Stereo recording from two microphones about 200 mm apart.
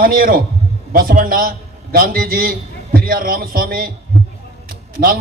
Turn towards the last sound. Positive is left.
turn(degrees=-45)  # may be behind; listen again after turning